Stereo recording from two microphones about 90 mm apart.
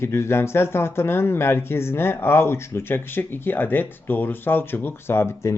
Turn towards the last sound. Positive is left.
turn(degrees=30)  # may be behind; listen again after turning